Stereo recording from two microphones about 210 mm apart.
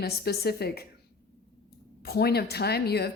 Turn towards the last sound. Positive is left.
turn(degrees=50)  # may be behind; listen again after turning